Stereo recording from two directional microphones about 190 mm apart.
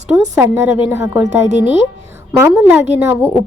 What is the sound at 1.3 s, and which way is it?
Speech, 35° right (ahead or behind).